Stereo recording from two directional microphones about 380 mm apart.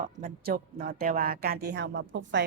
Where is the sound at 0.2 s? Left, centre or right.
Right.